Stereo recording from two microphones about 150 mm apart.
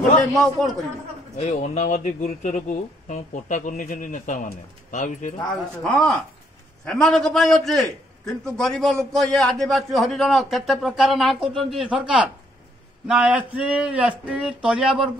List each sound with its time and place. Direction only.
0.3 s a man's voice: centre (ahead or behind)
1.4 s a man's voice: 45° left (ahead or behind)
5.9 s a man's voice: 5° left (ahead or behind)